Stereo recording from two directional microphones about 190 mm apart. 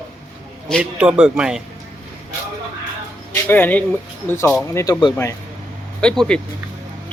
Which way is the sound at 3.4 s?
10° left (ahead or behind).